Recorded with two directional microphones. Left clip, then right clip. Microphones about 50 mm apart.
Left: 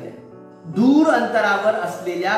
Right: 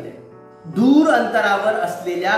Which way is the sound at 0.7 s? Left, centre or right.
Centre.